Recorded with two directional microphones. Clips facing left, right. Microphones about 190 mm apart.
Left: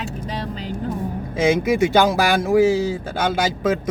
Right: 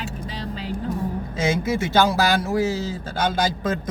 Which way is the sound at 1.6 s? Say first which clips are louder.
Left 4 dB; 15° left (ahead or behind).